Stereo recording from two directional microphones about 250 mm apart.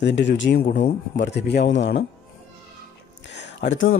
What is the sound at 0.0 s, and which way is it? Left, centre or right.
Speech, left.